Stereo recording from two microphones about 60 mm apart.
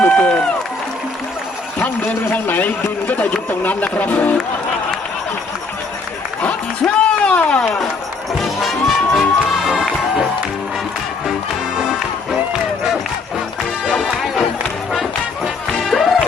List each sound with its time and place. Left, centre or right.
0.0 s run: centre
2.3 s speech: left
6.8 s speech: centre
8.3 s music: centre
11.8 s music: centre
14.1 s music: centre
15.9 s music: centre